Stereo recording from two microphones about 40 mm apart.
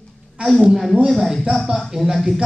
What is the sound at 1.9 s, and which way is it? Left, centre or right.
Speech, centre.